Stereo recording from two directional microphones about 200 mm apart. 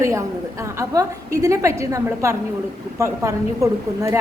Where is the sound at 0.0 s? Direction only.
15° right (ahead or behind).